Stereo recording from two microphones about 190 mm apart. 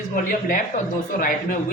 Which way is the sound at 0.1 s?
45° left (ahead or behind).